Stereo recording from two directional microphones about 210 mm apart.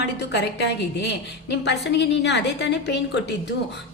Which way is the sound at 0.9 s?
55° left (ahead or behind).